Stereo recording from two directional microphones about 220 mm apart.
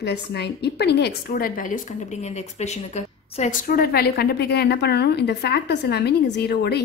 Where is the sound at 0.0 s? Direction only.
50° left (ahead or behind).